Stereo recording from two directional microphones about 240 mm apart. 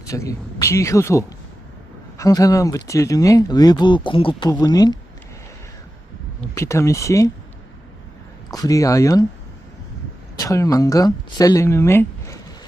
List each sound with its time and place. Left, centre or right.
0.1 s speech: centre
6.5 s speech: centre
8.5 s speech: centre
10.3 s speech: centre